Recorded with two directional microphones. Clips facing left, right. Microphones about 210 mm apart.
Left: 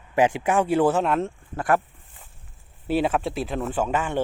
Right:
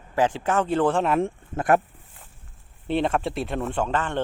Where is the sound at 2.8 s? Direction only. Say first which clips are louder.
Left 1 dB; 5° left (ahead or behind).